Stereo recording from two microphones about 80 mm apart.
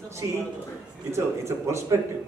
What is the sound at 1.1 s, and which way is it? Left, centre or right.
Speech, right.